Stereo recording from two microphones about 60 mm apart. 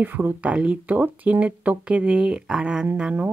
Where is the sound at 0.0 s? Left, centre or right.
Right.